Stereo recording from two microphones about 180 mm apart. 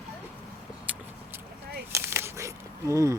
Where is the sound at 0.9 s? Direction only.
10° right (ahead or behind).